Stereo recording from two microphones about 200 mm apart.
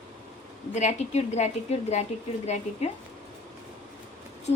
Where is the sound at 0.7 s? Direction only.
35° left (ahead or behind).